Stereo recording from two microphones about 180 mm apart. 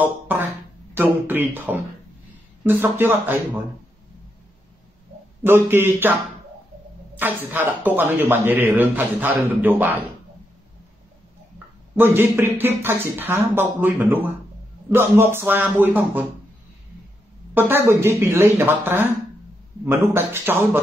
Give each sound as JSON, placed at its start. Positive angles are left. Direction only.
{"t": 0.0, "sound": "a sound", "side_deg": -10}
{"t": 0.9, "sound": "speech", "side_deg": -10}
{"t": 5.4, "sound": "speech", "side_deg": -15}
{"t": 7.2, "sound": "speech", "side_deg": -10}
{"t": 11.9, "sound": "speech", "side_deg": -10}
{"t": 17.6, "sound": "speech", "side_deg": -10}